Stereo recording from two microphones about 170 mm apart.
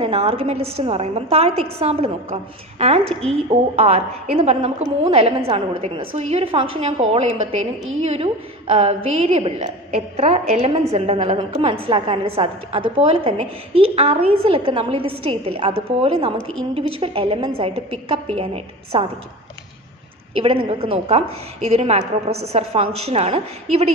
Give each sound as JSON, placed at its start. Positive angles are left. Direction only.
{"t": 0.0, "sound": "a woman's voice", "side_deg": -35}
{"t": 20.3, "sound": "a woman's voice", "side_deg": -35}